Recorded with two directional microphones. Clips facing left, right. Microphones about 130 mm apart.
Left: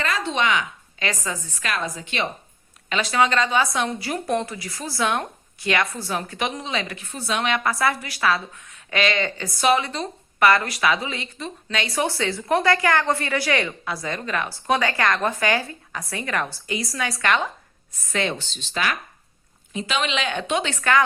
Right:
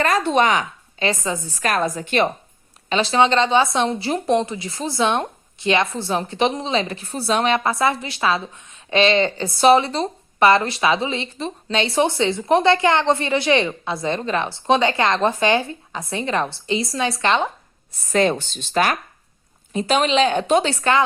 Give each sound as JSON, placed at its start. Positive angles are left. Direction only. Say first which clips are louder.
{"t": 0.0, "sound": "a woman's voice", "louder": "right 6 dB", "side_deg": -50}
{"t": 1.6, "sound": "speech", "louder": "right 7 dB", "side_deg": -45}
{"t": 2.9, "sound": "a woman's voice", "louder": "right 4 dB", "side_deg": -30}
{"t": 18.1, "sound": "a woman's voice", "louder": "right 7 dB", "side_deg": -40}